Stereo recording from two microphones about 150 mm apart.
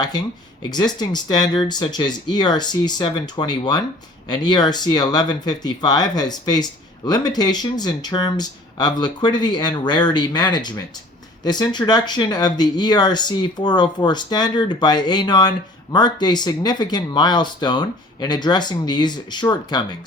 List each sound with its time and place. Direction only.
0.7 s speech: 30° left (ahead or behind)